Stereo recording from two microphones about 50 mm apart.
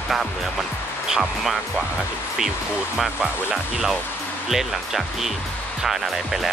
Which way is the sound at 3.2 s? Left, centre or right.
Right.